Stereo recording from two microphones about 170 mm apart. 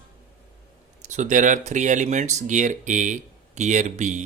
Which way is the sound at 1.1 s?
45° right (ahead or behind).